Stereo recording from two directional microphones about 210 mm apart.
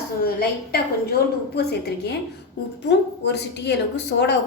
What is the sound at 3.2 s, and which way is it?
Speech, 55° left (ahead or behind).